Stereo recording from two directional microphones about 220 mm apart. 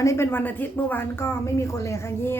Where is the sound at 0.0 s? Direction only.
10° left (ahead or behind).